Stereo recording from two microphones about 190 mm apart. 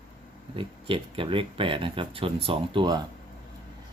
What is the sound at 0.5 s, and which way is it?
Speech, 30° right (ahead or behind).